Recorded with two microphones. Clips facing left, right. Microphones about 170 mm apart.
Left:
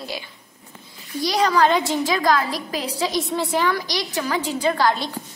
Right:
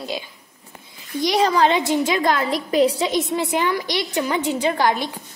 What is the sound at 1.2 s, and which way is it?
Speech, 25° right (ahead or behind).